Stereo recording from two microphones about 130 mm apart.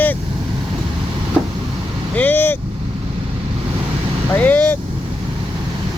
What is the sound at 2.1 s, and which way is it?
Vehicle, 15° left (ahead or behind).